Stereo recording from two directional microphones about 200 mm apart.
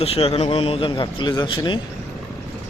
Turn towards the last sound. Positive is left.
turn(degrees=25)  # may be behind; listen again after turning